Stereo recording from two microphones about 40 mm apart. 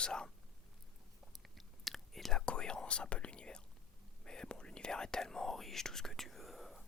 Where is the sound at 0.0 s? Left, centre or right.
Centre.